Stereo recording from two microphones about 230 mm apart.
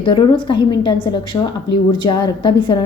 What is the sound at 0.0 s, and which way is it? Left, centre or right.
Speech, left.